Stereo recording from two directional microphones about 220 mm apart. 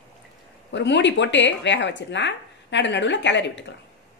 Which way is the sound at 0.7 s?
55° left (ahead or behind).